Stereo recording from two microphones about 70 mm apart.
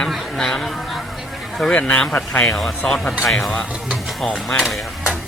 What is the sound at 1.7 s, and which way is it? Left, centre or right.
Speech, centre.